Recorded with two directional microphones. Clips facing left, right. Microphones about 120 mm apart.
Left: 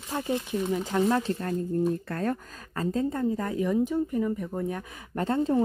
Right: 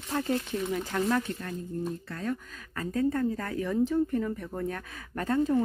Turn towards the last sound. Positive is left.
turn(degrees=25)  # may be behind; listen again after turning